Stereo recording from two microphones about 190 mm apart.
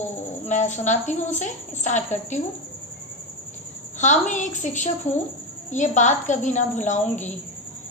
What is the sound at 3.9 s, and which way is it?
A woman's voice, 40° left (ahead or behind).